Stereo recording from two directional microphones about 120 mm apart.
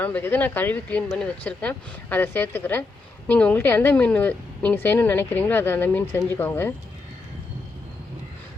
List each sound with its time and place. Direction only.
0.0 s speech: 15° left (ahead or behind)